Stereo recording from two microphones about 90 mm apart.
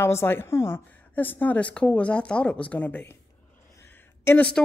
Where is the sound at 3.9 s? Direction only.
20° left (ahead or behind).